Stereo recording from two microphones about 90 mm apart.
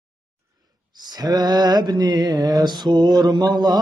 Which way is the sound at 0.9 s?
50° right (ahead or behind).